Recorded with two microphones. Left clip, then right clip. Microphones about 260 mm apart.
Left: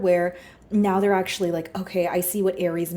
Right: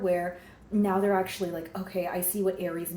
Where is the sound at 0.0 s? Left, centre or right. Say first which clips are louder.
Left 7 dB; left.